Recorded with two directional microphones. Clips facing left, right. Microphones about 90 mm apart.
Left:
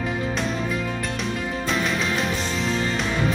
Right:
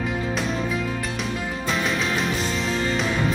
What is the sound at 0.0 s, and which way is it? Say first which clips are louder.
Music: even; centre (ahead or behind).